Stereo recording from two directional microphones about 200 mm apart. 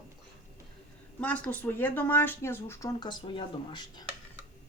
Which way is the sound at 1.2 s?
5° left (ahead or behind).